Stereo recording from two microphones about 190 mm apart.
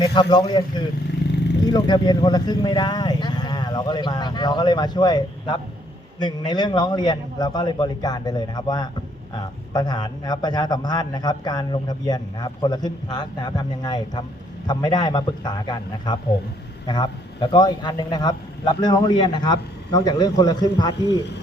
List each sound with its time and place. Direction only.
0.0 s a man's voice: 25° left (ahead or behind)
1.3 s vehicle: 65° left (ahead or behind)
1.6 s a man's voice: 20° left (ahead or behind)